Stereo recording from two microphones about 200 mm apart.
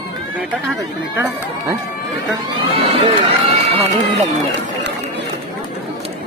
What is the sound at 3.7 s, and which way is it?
Speech, 30° right (ahead or behind).